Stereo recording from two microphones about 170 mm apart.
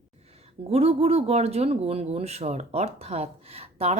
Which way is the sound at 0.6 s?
35° right (ahead or behind).